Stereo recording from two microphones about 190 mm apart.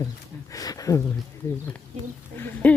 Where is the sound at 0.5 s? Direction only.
20° left (ahead or behind).